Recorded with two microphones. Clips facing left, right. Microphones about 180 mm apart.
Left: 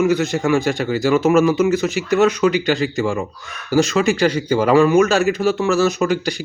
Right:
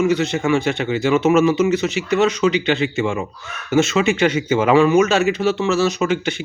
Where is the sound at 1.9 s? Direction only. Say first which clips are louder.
Left 2 dB; 40° left (ahead or behind).